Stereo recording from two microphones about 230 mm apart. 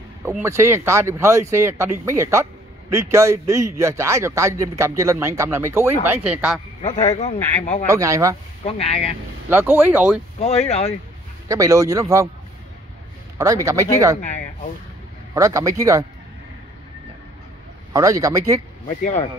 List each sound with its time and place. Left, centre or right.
0.2 s a man's voice: centre
6.8 s speech: left
7.9 s a man's voice: centre
8.6 s speech: left
9.5 s a man's voice: centre
10.4 s speech: left
11.4 s a man's voice: centre
13.4 s a man's voice: centre
15.3 s a man's voice: centre
17.9 s a man's voice: centre